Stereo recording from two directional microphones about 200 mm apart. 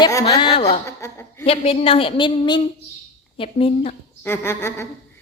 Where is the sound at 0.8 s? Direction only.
15° left (ahead or behind).